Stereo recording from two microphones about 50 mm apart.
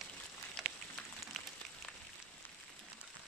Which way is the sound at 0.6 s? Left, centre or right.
Centre.